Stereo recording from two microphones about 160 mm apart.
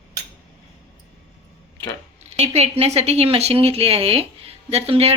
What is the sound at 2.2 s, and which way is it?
Speech, 40° right (ahead or behind).